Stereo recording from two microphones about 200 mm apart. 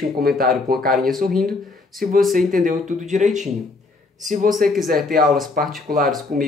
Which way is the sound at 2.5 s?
40° right (ahead or behind).